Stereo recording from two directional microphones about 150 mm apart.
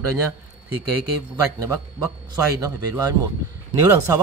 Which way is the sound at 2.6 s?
20° right (ahead or behind).